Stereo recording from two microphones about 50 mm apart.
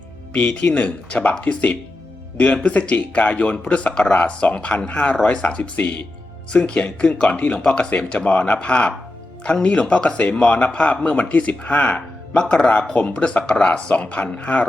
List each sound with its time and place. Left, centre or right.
0.3 s speech: left
9.9 s speech: left